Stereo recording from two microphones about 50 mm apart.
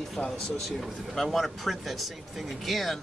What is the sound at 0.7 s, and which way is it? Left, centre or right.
Speech, centre.